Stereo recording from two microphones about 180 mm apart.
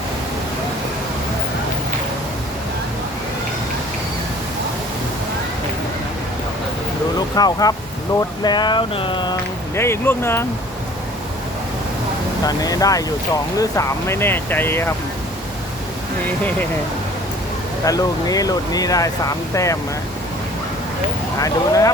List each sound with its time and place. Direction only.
7.3 s speech: 20° left (ahead or behind)
9.7 s speech: 15° left (ahead or behind)
12.5 s speech: 20° left (ahead or behind)
17.8 s speech: 20° left (ahead or behind)
21.3 s speech: 20° left (ahead or behind)